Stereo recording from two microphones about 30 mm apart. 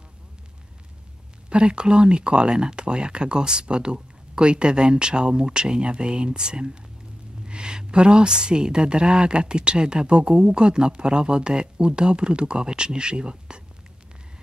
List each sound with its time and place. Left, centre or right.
1.5 s a woman's voice: right